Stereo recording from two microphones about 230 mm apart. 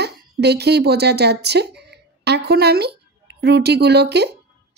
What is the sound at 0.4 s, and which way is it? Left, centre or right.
Speech, right.